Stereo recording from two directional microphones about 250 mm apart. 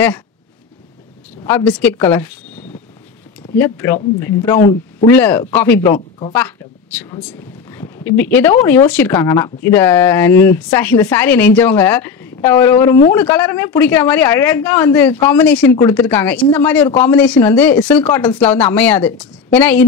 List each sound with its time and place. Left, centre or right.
1.4 s a woman's voice: centre
5.9 s speech: left
7.7 s a woman's voice: centre